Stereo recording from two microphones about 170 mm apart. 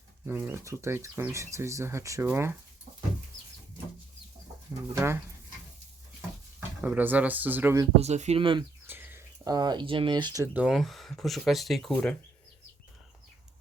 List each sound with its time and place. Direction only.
0.3 s speech: 15° right (ahead or behind)
6.6 s speech: 10° right (ahead or behind)
7.9 s speech: 40° right (ahead or behind)
8.9 s speech: 15° right (ahead or behind)
10.5 s speech: 5° right (ahead or behind)